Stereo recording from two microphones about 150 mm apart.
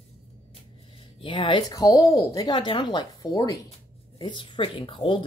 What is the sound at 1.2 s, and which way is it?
Speech, 35° left (ahead or behind).